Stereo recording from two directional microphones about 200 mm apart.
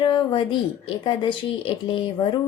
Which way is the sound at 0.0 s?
25° left (ahead or behind).